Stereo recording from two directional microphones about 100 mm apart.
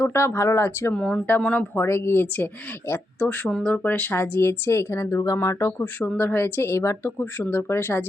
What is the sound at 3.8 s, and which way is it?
Speech, 20° left (ahead or behind).